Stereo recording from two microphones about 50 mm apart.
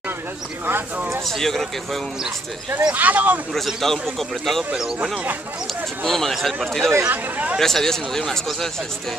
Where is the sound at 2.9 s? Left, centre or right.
Right.